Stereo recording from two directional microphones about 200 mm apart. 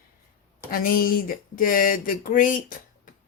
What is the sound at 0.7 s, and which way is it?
Speech, 45° left (ahead or behind).